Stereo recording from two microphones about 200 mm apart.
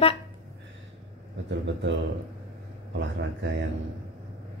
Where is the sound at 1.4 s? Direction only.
65° right (ahead or behind).